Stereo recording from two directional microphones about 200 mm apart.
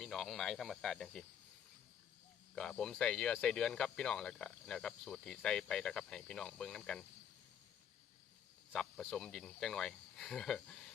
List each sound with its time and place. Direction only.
0.0 s speech: centre (ahead or behind)
2.6 s speech: 5° left (ahead or behind)
8.7 s speech: 5° left (ahead or behind)